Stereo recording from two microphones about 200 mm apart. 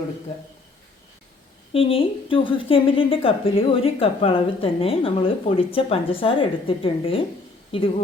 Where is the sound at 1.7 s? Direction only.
25° left (ahead or behind).